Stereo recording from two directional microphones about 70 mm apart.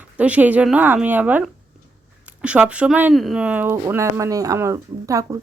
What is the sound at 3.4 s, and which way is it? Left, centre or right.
Speech, centre.